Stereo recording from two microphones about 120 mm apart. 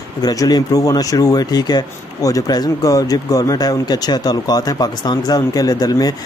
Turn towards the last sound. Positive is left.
turn(degrees=35)  # may be behind; listen again after turning